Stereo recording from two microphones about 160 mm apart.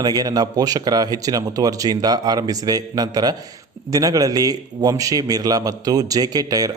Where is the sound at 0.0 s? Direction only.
25° right (ahead or behind).